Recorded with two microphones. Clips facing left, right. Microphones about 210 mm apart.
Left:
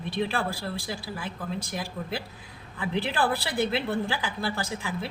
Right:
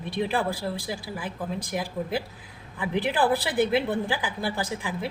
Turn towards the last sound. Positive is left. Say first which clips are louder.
# right 2 dB
turn(degrees=-15)  # may be behind; listen again after turning